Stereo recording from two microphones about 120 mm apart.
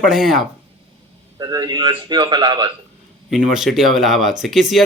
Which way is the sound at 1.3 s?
30° right (ahead or behind).